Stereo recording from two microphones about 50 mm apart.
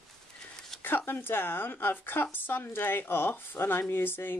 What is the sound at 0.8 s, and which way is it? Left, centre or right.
Speech, left.